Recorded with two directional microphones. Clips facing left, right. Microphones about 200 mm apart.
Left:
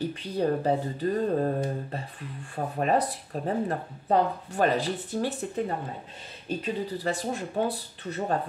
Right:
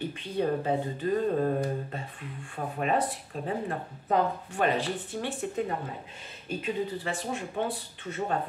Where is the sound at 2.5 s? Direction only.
40° left (ahead or behind).